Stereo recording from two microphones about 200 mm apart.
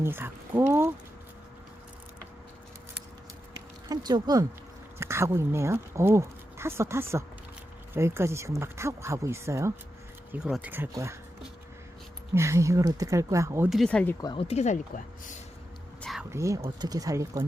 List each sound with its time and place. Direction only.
0.0 s speech: 10° right (ahead or behind)
3.8 s speech: 20° right (ahead or behind)
12.3 s speech: 15° right (ahead or behind)
13.7 s speech: centre (ahead or behind)
14.2 s speech: 25° left (ahead or behind)
16.0 s a sound: centre (ahead or behind)
16.3 s speech: 15° right (ahead or behind)